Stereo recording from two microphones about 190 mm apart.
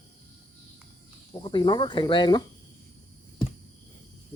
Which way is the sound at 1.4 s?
25° left (ahead or behind).